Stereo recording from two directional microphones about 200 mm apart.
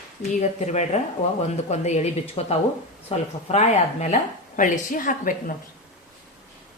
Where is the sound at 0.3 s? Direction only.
35° left (ahead or behind).